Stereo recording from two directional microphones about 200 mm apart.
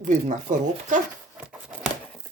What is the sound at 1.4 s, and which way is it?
Tearing, 5° right (ahead or behind).